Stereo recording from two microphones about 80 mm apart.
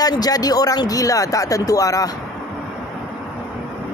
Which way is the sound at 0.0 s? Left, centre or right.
Left.